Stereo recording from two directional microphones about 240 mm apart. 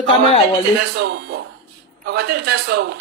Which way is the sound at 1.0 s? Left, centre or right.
Right.